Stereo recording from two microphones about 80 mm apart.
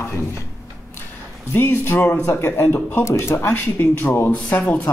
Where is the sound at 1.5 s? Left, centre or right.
Left.